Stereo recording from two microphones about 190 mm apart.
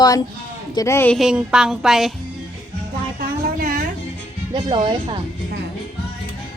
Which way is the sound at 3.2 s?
45° right (ahead or behind).